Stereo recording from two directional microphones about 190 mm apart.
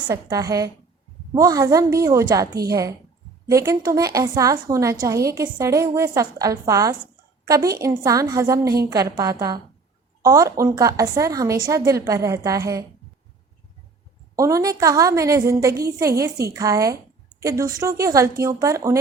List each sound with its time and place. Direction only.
0.1 s a woman's voice: 20° right (ahead or behind)
14.3 s a woman's voice: 15° right (ahead or behind)